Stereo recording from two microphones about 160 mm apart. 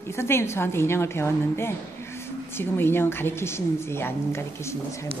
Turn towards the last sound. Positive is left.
turn(degrees=15)  # may be behind; listen again after turning